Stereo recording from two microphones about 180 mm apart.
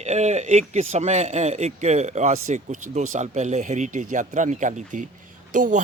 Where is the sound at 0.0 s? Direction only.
40° right (ahead or behind).